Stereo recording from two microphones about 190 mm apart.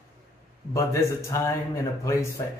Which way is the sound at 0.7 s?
15° left (ahead or behind).